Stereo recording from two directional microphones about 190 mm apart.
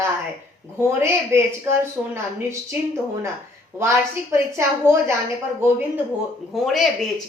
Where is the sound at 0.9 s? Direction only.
15° right (ahead or behind).